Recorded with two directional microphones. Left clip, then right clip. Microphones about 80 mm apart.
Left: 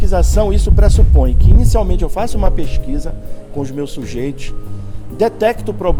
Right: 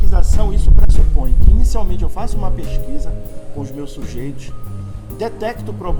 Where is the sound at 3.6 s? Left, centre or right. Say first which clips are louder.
Left 7 dB; left.